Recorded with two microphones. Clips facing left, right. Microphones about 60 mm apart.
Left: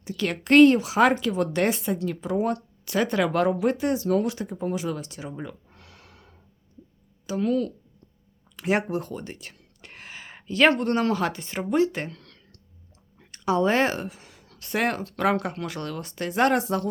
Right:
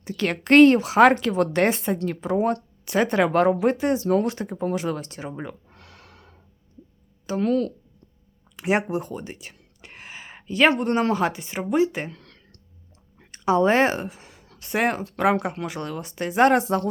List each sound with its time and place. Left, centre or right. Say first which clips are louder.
0.0 s a woman's voice: right 2 dB; right
4.5 s speech: right 3 dB; right
5.6 s a sound: right 2 dB; right
7.3 s speech: right 2 dB; right
8.5 s speech: right 2 dB; centre
12.1 s clicking: right 1 dB; right
13.1 s speech: right 3 dB; right
16.5 s speech: right 3 dB; right